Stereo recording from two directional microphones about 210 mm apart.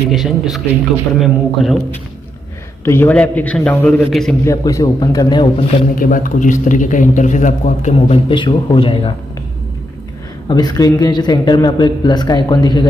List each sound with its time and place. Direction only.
0.1 s a man's voice: centre (ahead or behind)
2.8 s a man's voice: 10° left (ahead or behind)
4.5 s a man's voice: 15° left (ahead or behind)
5.9 s a man's voice: 40° left (ahead or behind)
10.5 s a man's voice: 20° left (ahead or behind)